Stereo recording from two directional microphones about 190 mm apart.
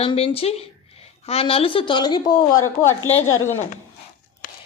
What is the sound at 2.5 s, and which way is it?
Speech, 90° left.